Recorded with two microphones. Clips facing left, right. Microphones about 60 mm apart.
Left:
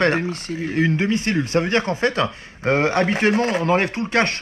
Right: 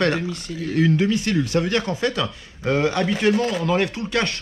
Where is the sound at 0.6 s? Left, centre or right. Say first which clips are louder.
Right 1 dB; left.